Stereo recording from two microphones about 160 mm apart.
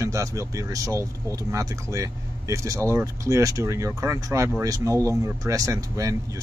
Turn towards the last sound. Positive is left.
turn(degrees=-20)  # may be behind; listen again after turning